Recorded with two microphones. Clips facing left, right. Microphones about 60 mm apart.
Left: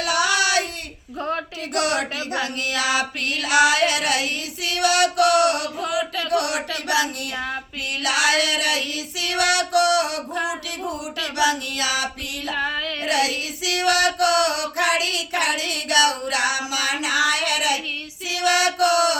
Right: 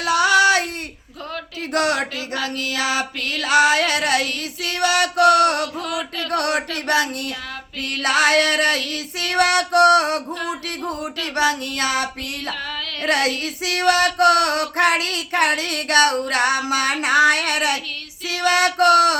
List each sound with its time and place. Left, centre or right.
0.2 s female singing: right
1.7 s music: right
2.1 s a sound: left
2.8 s music: right
5.8 s music: centre
6.3 s female singing: right
18.3 s a sound: right